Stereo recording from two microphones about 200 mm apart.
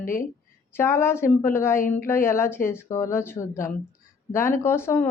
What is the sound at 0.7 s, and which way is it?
A woman's voice, 15° left (ahead or behind).